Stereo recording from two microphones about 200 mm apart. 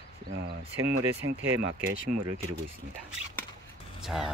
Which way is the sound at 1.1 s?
10° right (ahead or behind).